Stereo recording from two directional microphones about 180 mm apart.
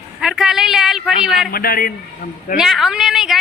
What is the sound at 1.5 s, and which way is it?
A man's voice, 55° left (ahead or behind).